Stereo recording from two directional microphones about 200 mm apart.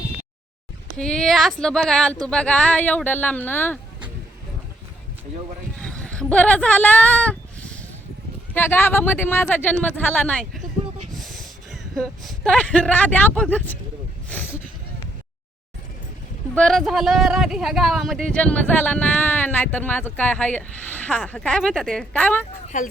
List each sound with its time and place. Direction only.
0.9 s speech: 5° left (ahead or behind)
5.7 s a sound: 5° left (ahead or behind)
8.5 s speech: 10° left (ahead or behind)
14.3 s a sound: 10° left (ahead or behind)
16.6 s speech: centre (ahead or behind)
22.7 s speech: 40° left (ahead or behind)